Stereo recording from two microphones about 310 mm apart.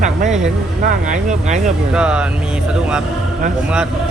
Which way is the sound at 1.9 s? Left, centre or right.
Centre.